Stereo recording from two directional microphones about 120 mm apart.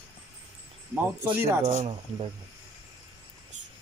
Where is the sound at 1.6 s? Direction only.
70° right (ahead or behind).